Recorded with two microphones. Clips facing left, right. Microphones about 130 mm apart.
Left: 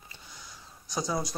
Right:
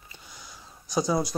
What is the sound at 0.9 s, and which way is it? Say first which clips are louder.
Speech: right 6 dB; 20° right (ahead or behind).